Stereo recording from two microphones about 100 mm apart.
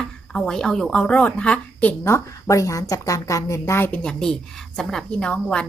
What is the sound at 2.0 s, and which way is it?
A woman's voice, 30° left (ahead or behind).